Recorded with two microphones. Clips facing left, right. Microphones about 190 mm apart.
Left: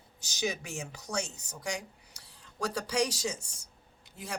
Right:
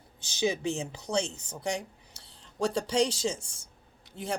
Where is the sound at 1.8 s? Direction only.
25° right (ahead or behind).